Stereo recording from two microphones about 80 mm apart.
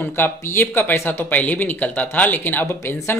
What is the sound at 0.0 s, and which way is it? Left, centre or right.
Speech, left.